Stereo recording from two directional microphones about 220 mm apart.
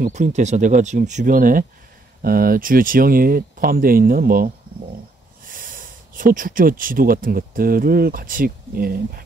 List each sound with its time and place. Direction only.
0.0 s speech: 35° right (ahead or behind)
5.5 s speech: 40° right (ahead or behind)